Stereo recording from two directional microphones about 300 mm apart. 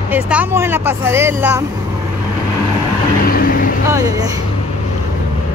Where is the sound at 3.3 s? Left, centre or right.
Left.